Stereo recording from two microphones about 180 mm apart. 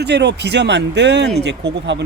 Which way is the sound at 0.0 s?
70° right (ahead or behind).